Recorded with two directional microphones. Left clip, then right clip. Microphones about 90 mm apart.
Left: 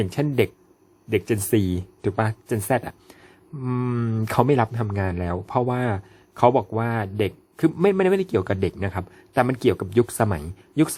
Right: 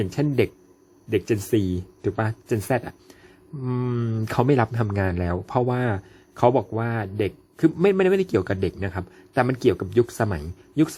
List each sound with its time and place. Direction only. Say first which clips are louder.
0.0 s speech: left 1 dB; 25° left (ahead or behind)
1.5 s speech: left 1 dB; 35° left (ahead or behind)
2.6 s speech: left 4 dB; 15° left (ahead or behind)
3.6 s speech: left 1 dB; 25° left (ahead or behind)
4.4 s speech: even; 5° left (ahead or behind)
8.4 s speech: left 1 dB; 25° left (ahead or behind)